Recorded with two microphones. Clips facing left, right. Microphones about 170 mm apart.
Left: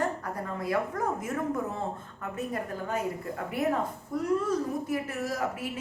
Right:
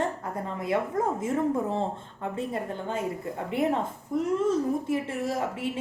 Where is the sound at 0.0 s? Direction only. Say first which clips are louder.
Right 1 dB; 25° right (ahead or behind).